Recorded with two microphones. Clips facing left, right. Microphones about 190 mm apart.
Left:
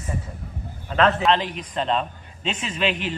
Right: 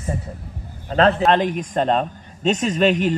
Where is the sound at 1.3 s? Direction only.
50° right (ahead or behind).